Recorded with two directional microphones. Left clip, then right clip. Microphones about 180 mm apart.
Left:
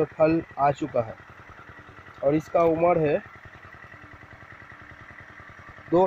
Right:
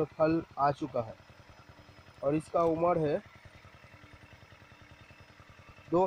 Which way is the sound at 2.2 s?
Centre (ahead or behind).